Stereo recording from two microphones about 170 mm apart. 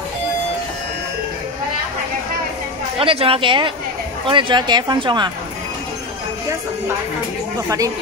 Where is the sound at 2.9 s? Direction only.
35° right (ahead or behind).